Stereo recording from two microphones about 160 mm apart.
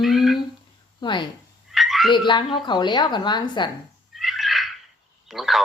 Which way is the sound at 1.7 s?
Centre (ahead or behind).